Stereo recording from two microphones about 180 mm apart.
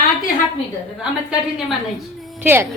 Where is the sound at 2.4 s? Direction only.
10° right (ahead or behind).